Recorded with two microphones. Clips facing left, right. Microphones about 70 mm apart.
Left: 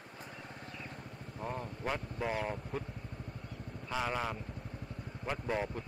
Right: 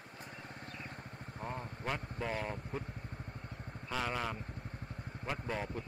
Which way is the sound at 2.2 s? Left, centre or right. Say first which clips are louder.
Left 3 dB; centre.